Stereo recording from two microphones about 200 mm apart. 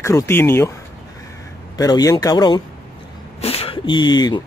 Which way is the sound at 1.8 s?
20° left (ahead or behind).